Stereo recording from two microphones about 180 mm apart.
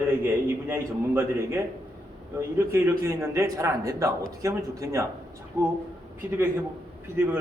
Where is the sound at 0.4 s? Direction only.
15° right (ahead or behind).